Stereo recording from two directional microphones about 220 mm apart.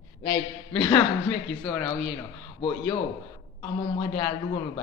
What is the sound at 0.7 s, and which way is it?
A man's voice, 10° left (ahead or behind).